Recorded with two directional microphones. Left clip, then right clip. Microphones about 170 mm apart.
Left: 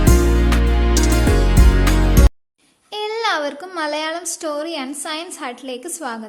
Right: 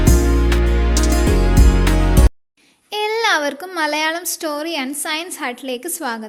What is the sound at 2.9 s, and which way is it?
A woman's voice, 35° right (ahead or behind).